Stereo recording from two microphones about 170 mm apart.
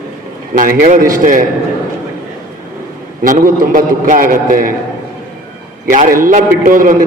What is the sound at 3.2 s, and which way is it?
A man's voice, 55° right (ahead or behind).